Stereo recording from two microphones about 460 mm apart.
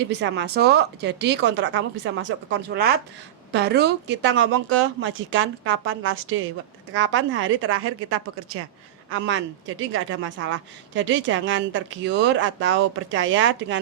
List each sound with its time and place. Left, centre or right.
0.0 s speech: right